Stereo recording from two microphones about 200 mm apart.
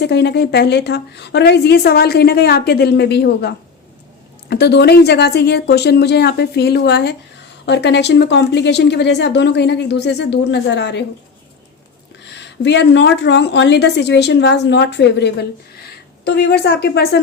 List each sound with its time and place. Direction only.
0.0 s a woman's voice: 55° left (ahead or behind)
12.3 s a woman's voice: 60° left (ahead or behind)